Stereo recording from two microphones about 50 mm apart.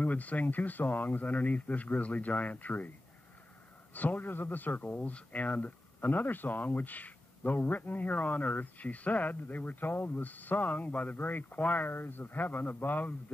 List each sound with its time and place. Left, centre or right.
0.0 s speech: left
3.9 s speech: left